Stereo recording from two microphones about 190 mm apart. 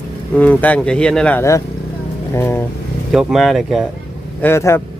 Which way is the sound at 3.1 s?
Centre (ahead or behind).